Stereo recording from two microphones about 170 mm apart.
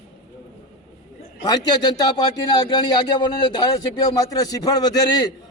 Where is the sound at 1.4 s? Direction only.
25° left (ahead or behind).